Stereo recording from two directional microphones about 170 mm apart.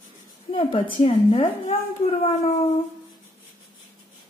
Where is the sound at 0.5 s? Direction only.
30° left (ahead or behind).